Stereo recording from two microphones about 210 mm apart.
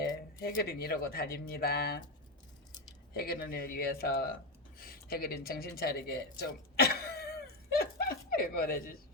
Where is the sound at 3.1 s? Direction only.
45° left (ahead or behind).